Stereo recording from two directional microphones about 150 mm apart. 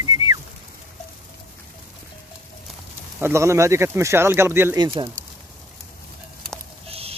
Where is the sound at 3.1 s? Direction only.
15° right (ahead or behind).